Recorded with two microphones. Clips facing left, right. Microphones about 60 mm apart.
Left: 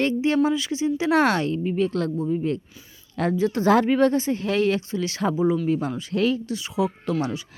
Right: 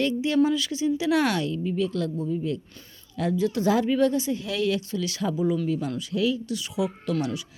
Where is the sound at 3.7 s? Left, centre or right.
Left.